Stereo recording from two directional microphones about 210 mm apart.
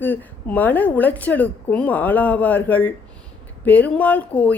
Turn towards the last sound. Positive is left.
turn(degrees=5)  # may be behind; listen again after turning